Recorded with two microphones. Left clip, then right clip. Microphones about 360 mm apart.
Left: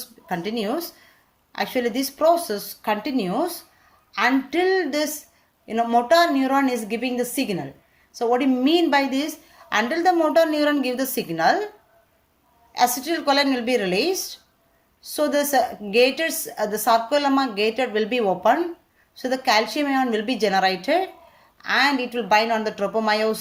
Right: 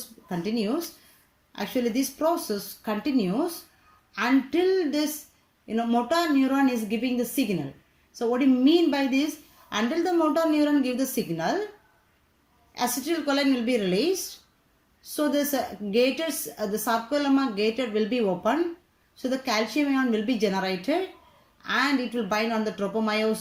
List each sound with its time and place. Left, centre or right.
0.3 s a woman's voice: left
12.7 s a woman's voice: left